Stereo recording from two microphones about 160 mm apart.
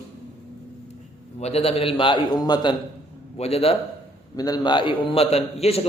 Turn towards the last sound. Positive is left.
turn(degrees=40)  # may be behind; listen again after turning